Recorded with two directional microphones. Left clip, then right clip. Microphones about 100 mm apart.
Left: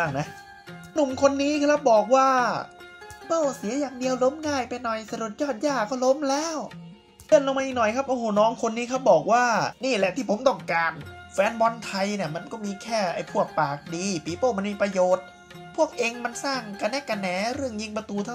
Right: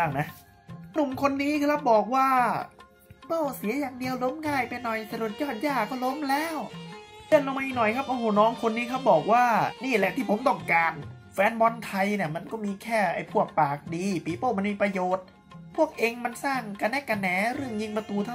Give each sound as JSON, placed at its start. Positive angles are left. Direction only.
{"t": 0.0, "sound": "speech", "side_deg": 30}
{"t": 3.3, "sound": "speech", "side_deg": 15}